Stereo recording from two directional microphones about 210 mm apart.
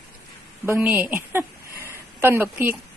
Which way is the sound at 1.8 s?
10° right (ahead or behind).